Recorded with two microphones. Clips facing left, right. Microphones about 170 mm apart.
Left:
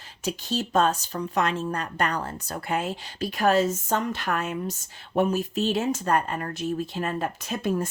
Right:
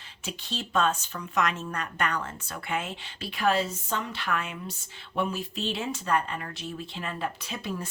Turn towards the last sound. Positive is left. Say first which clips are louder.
# left 8 dB
turn(degrees=45)  # may be behind; listen again after turning